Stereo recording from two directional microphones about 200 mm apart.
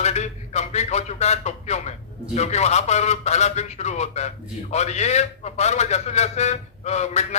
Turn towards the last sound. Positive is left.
turn(degrees=35)  # may be behind; listen again after turning